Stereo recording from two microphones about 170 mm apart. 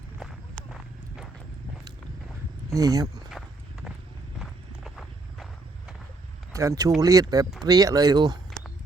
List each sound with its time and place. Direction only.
0.2 s walk: centre (ahead or behind)
2.7 s speech: 20° right (ahead or behind)
4.4 s walk: centre (ahead or behind)
6.5 s speech: 20° right (ahead or behind)